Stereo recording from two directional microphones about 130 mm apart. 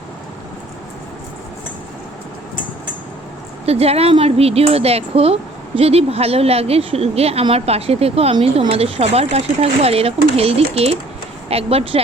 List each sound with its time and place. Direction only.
3.7 s speech: 50° right (ahead or behind)